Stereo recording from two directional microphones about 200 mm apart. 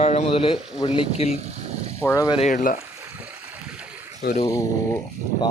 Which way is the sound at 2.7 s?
15° right (ahead or behind).